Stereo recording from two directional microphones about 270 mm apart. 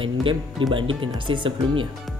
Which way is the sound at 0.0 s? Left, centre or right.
Centre.